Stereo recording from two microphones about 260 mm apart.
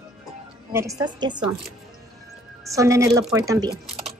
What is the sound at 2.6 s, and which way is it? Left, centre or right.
Speech, centre.